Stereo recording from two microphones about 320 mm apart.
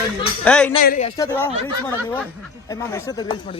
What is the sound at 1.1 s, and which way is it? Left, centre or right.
Speech, centre.